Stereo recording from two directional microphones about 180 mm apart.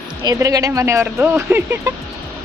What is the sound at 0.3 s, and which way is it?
Speech, 20° right (ahead or behind).